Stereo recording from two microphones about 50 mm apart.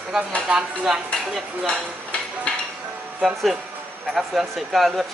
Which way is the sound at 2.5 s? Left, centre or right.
Left.